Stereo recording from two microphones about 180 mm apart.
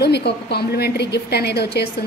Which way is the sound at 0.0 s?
65° left (ahead or behind).